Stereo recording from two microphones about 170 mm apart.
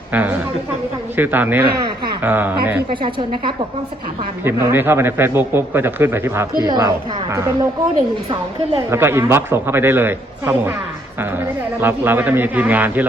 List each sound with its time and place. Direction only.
0.1 s speech: 10° right (ahead or behind)
2.9 s a woman's voice: 30° right (ahead or behind)
4.4 s a woman's voice: 15° right (ahead or behind)
8.9 s speech: 15° right (ahead or behind)